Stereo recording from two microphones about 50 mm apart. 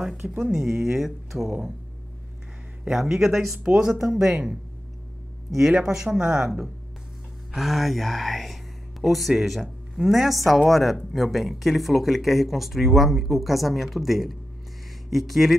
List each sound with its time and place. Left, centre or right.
0.0 s speech: centre
3.0 s speech: centre
5.7 s speech: centre